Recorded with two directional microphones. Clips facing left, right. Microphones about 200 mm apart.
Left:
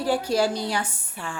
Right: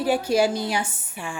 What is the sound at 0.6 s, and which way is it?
Speech, 20° right (ahead or behind).